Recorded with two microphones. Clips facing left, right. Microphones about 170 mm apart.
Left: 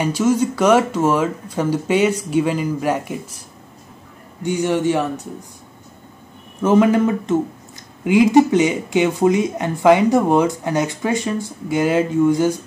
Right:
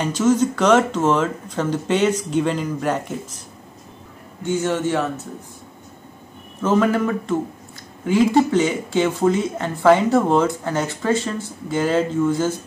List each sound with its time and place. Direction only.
0.0 s speech: 10° left (ahead or behind)
4.4 s speech: 15° left (ahead or behind)
6.6 s speech: 15° left (ahead or behind)